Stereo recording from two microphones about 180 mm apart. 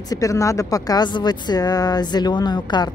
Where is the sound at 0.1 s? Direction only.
20° left (ahead or behind).